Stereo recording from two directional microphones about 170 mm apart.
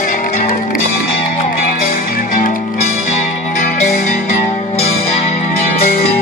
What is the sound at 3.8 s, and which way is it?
Music, 45° left (ahead or behind).